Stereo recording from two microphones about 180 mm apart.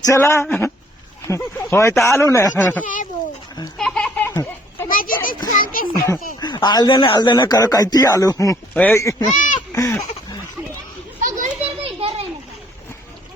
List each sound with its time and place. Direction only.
0.0 s speech: 15° left (ahead or behind)
2.8 s a child's voice: 45° left (ahead or behind)
3.8 s a sound: 5° left (ahead or behind)
4.9 s a child's voice: 50° left (ahead or behind)
6.4 s speech: 25° left (ahead or behind)
9.3 s speech: 45° left (ahead or behind)
9.6 s a sound: 15° left (ahead or behind)
11.2 s children playing: 45° right (ahead or behind)
11.8 s children playing: 30° right (ahead or behind)